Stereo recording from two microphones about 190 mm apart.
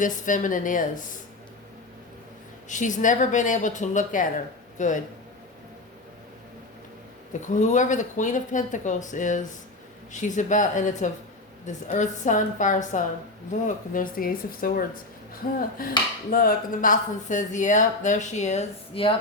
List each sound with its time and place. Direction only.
0.0 s speech: 45° left (ahead or behind)
2.6 s speech: 40° left (ahead or behind)
7.4 s speech: 40° left (ahead or behind)